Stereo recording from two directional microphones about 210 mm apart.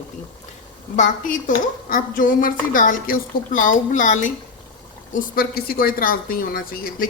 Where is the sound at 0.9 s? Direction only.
40° left (ahead or behind).